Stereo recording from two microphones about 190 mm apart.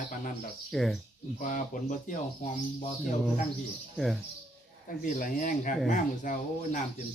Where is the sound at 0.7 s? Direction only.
Centre (ahead or behind).